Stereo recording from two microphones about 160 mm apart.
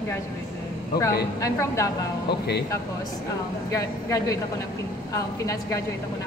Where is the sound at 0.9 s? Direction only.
75° left (ahead or behind).